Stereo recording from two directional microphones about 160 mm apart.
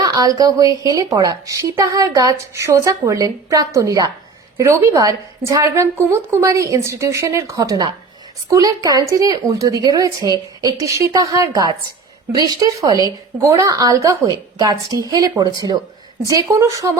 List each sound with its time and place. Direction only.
0.0 s a woman's voice: 25° right (ahead or behind)